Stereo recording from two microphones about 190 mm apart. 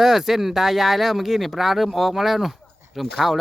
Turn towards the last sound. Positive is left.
turn(degrees=0)  # may be behind; listen again after turning